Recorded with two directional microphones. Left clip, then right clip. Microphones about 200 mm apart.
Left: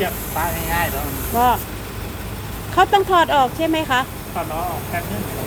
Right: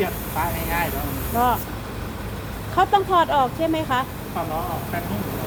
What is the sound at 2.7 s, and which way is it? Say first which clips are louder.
Speech: left 3 dB; 20° left (ahead or behind).